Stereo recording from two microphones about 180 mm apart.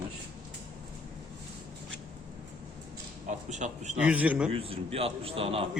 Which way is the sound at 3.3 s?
40° right (ahead or behind).